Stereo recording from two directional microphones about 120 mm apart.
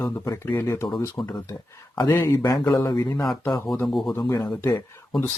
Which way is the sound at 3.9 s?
Centre (ahead or behind).